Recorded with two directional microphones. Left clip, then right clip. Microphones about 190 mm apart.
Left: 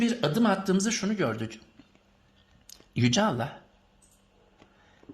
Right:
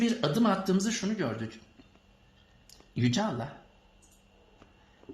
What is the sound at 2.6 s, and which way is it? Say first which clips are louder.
Speech: left 3 dB; 50° left (ahead or behind).